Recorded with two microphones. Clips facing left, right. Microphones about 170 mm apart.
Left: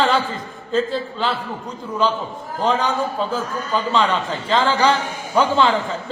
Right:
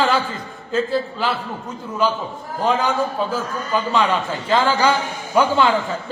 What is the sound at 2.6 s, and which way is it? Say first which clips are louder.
A man's voice: right 1 dB; 10° right (ahead or behind).